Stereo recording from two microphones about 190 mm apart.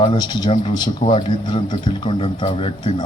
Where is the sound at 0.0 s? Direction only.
25° left (ahead or behind).